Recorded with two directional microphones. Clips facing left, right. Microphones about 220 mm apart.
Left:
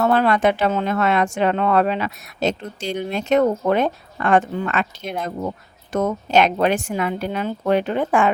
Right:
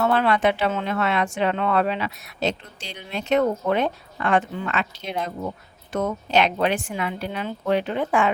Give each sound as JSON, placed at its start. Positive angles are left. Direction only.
{"t": 0.0, "sound": "speech", "side_deg": 40}